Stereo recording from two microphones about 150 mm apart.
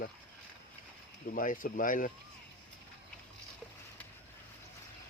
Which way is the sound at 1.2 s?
65° left (ahead or behind).